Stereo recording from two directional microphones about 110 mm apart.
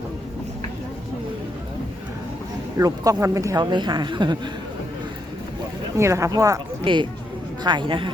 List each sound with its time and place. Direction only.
2.7 s speech: 35° right (ahead or behind)
6.0 s speech: 25° right (ahead or behind)
6.8 s a man's voice: 45° right (ahead or behind)